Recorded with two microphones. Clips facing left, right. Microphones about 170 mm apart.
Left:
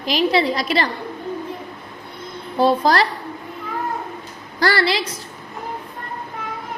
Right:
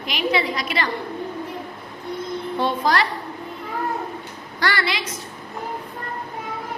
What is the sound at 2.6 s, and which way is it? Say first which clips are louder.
Speech: left 6 dB; 35° left (ahead or behind).